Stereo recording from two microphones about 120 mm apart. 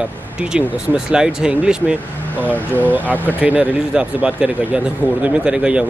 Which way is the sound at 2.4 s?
15° left (ahead or behind).